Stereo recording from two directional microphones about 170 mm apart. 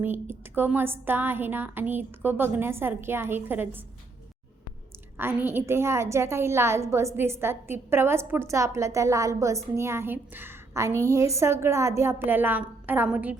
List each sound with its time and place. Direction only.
0.0 s a woman's voice: 10° right (ahead or behind)
5.1 s a woman's voice: 15° right (ahead or behind)